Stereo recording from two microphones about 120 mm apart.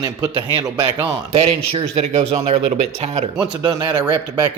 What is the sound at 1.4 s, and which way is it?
Speech, 55° right (ahead or behind).